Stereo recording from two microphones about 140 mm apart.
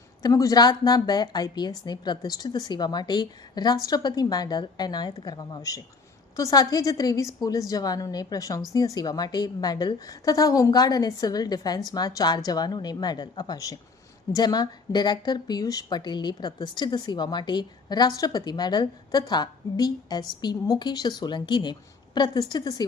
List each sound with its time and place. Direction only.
0.2 s a woman's voice: 25° left (ahead or behind)